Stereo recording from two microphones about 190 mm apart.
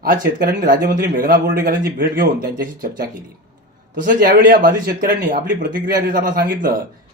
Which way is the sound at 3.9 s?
45° right (ahead or behind).